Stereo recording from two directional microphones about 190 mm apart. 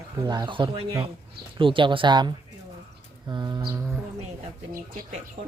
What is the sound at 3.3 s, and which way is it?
Speech, 25° right (ahead or behind).